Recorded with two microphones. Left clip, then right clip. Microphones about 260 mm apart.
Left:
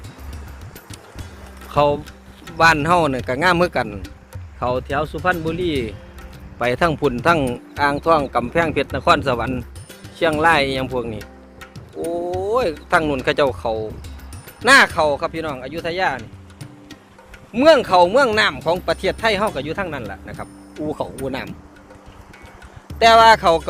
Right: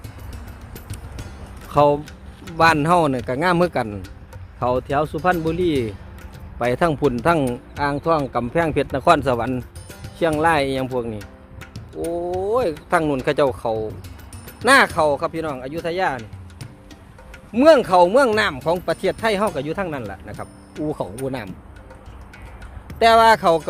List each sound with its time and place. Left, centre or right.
1.7 s speech: centre
4.6 s speech: centre
8.7 s speech: centre
10.2 s speech: centre
17.5 s speech: centre
23.0 s speech: centre